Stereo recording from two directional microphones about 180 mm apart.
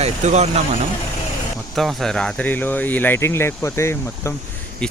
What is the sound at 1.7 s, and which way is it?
Speech, centre (ahead or behind).